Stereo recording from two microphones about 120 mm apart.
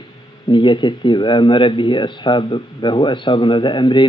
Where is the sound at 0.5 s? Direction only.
40° left (ahead or behind).